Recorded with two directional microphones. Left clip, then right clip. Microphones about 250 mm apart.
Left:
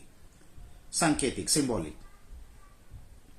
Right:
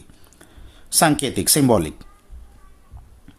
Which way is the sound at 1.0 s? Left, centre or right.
Right.